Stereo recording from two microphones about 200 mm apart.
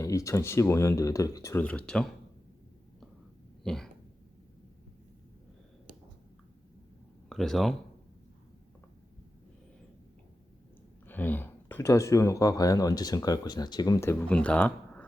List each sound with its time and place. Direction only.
0.0 s speech: 15° left (ahead or behind)
3.6 s a sound: centre (ahead or behind)
7.3 s speech: centre (ahead or behind)
11.0 s speech: 10° left (ahead or behind)